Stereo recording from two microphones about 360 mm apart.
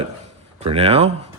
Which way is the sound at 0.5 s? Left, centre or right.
Centre.